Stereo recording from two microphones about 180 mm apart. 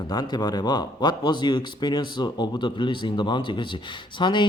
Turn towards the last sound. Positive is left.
turn(degrees=25)  # may be behind; listen again after turning